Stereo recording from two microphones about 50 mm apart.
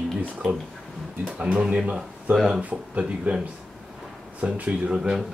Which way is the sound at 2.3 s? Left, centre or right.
Centre.